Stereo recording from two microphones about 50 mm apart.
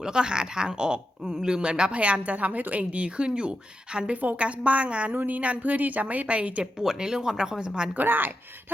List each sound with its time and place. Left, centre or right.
0.0 s a woman's voice: centre
6.7 s speech: centre
7.9 s a woman's voice: right